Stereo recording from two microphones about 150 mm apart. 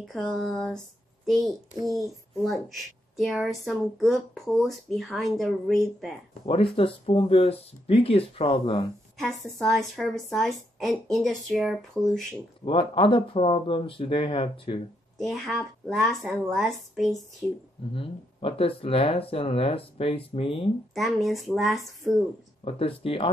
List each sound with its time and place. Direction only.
0.0 s a child's voice: centre (ahead or behind)
3.2 s speech: centre (ahead or behind)
6.4 s speech: 35° left (ahead or behind)
9.2 s speech: centre (ahead or behind)
12.6 s speech: 35° left (ahead or behind)
15.1 s speech: centre (ahead or behind)
17.9 s speech: 40° left (ahead or behind)
20.9 s speech: centre (ahead or behind)
22.7 s speech: 40° left (ahead or behind)